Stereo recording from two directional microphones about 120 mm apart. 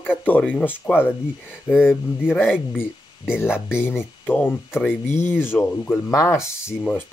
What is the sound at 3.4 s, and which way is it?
Speech, 20° left (ahead or behind).